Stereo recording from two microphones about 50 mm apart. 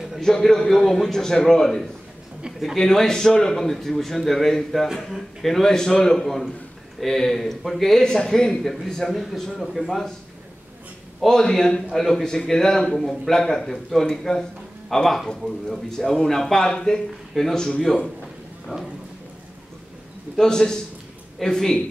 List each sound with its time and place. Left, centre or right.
0.2 s a man's voice: centre
11.2 s a man's voice: centre
18.7 s speech: centre
20.3 s a man's voice: centre